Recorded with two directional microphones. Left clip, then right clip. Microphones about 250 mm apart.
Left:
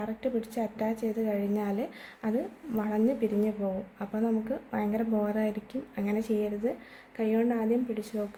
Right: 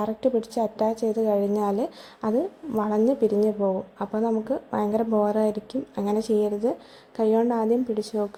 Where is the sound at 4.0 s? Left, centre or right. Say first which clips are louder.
Right 5 dB; centre.